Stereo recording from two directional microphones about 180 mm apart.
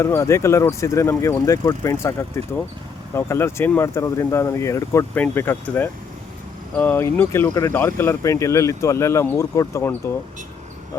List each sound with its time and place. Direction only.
0.0 s speech: 15° left (ahead or behind)